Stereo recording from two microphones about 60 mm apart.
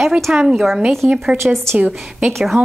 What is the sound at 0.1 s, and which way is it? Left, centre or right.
A woman's voice, centre.